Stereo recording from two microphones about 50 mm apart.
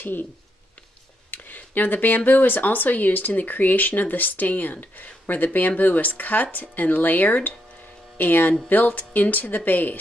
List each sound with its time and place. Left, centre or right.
0.0 s speech: left
1.3 s speech: left